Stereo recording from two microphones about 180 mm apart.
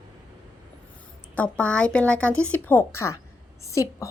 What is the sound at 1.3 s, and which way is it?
A woman's voice, 5° left (ahead or behind).